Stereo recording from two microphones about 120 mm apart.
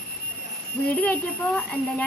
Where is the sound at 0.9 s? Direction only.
10° left (ahead or behind).